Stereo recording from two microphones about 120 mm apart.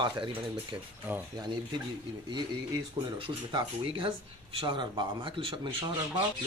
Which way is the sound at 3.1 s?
45° right (ahead or behind).